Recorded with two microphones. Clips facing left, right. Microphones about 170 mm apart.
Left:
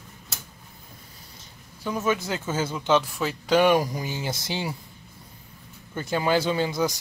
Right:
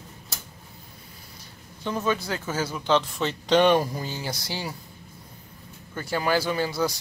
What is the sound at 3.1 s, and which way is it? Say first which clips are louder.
Speech: even; 5° left (ahead or behind).